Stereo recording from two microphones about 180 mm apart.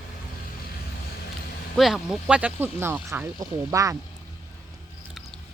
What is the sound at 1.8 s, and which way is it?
Speech, centre (ahead or behind).